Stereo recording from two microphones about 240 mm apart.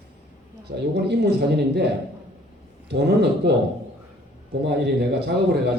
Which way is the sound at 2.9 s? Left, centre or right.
Right.